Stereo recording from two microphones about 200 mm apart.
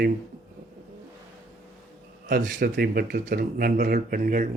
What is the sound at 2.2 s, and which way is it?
Speech, 45° right (ahead or behind).